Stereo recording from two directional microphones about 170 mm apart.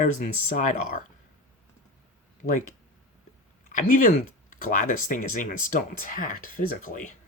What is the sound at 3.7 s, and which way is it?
Speech, 50° left (ahead or behind).